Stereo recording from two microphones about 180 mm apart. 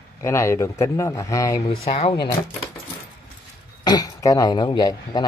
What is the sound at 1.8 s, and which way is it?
Speech, 35° left (ahead or behind).